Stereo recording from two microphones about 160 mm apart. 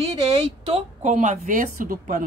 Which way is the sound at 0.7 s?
45° right (ahead or behind).